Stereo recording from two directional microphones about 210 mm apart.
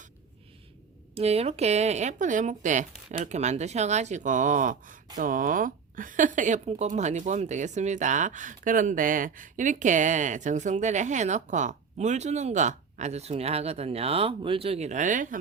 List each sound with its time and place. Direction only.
1.1 s speech: 30° right (ahead or behind)